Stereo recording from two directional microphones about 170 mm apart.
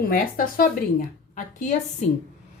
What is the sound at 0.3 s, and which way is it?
Speech, 55° left (ahead or behind).